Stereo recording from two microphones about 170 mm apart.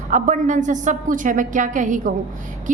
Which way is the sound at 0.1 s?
45° right (ahead or behind).